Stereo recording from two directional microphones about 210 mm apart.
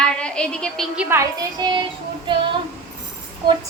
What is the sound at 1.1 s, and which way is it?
Speech, 15° right (ahead or behind).